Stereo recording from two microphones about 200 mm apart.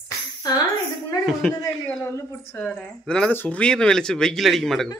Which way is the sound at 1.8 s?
10° left (ahead or behind).